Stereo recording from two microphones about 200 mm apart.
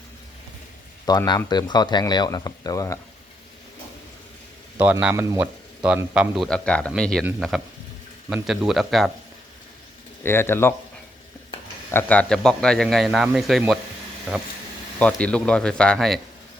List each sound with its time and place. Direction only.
1.0 s speech: 20° left (ahead or behind)
4.8 s speech: 5° right (ahead or behind)
10.2 s speech: 10° left (ahead or behind)
11.9 s speech: 10° left (ahead or behind)